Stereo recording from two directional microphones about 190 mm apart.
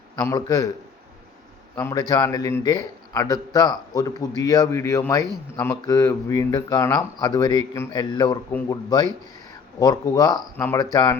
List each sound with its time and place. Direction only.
0.2 s a man's voice: 20° left (ahead or behind)
1.7 s a man's voice: 15° left (ahead or behind)